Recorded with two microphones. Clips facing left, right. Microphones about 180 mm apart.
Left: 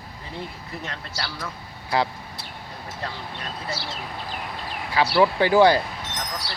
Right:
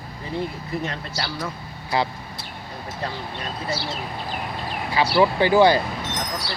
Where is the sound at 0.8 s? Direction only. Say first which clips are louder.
Right 4 dB; 10° right (ahead or behind).